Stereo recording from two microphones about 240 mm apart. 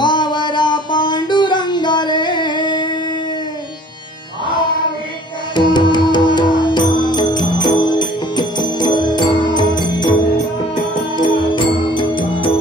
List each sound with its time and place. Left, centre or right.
0.0 s music: centre
5.6 s music: centre